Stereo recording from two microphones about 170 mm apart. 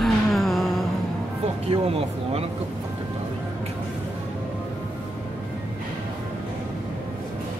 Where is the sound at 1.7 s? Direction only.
35° right (ahead or behind).